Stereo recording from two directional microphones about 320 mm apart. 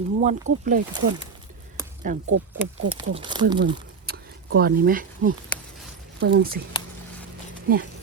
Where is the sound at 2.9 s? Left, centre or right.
Centre.